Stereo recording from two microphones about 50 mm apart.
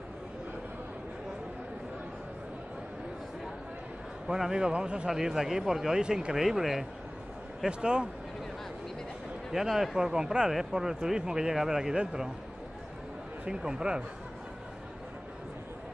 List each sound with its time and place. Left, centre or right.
4.3 s speech: centre
5.1 s speech: centre
6.3 s speech: centre
7.6 s speech: centre
9.5 s speech: centre
13.5 s speech: centre